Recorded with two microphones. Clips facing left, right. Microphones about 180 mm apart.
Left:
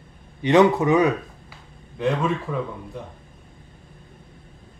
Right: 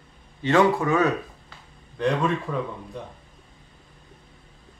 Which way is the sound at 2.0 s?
5° left (ahead or behind).